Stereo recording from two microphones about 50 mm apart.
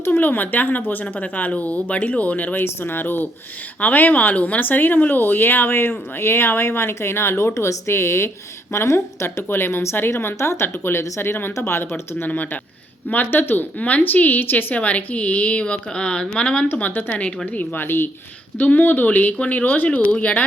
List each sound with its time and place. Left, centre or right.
0.0 s a woman's voice: left
10.3 s a woman's voice: left
13.7 s a woman's voice: left
17.7 s a woman's voice: left
18.5 s speech: left